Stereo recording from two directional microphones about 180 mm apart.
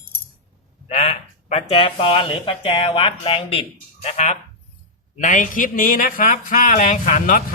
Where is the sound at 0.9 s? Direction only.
35° left (ahead or behind).